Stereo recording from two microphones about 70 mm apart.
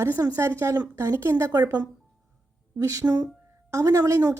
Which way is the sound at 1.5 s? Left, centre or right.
Right.